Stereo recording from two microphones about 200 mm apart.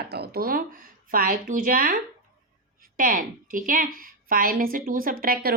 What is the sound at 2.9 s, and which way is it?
A woman's voice, 45° right (ahead or behind).